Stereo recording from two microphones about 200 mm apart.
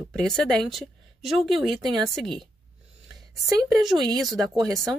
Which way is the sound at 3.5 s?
15° right (ahead or behind).